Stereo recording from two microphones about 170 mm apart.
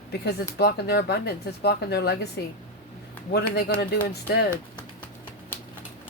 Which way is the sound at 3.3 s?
65° left (ahead or behind).